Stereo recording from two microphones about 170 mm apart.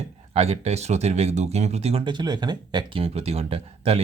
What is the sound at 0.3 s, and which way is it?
Speech, 35° right (ahead or behind).